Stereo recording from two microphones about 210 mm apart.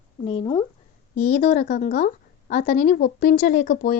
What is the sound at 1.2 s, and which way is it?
A woman's voice, 35° left (ahead or behind).